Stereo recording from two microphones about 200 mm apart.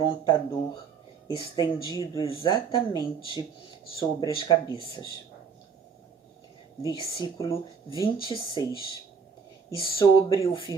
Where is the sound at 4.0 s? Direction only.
20° left (ahead or behind).